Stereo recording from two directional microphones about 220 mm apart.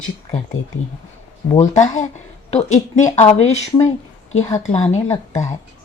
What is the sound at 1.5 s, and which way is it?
Speech, 30° left (ahead or behind).